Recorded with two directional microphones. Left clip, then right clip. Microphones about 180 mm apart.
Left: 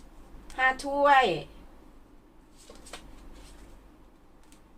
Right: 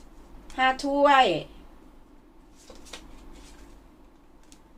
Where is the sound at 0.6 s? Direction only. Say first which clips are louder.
Right 3 dB; 40° right (ahead or behind).